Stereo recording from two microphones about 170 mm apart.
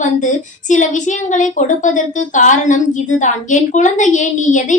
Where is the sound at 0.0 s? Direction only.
45° left (ahead or behind).